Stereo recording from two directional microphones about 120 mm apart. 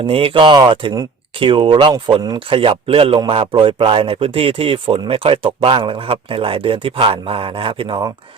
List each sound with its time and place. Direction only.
0.0 s speech: 50° right (ahead or behind)